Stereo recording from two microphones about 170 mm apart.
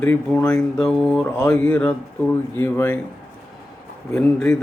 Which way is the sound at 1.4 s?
10° left (ahead or behind).